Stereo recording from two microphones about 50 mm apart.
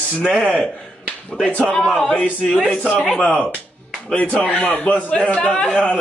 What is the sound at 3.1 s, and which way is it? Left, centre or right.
A man's voice, centre.